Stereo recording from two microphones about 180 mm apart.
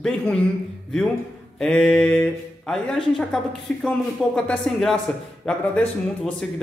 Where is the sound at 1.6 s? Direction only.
5° left (ahead or behind).